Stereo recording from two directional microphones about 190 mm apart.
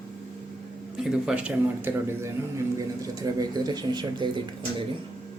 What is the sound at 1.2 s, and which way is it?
A man's voice, 5° right (ahead or behind).